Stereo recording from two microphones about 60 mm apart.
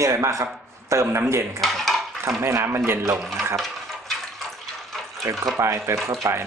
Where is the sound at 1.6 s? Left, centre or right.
Centre.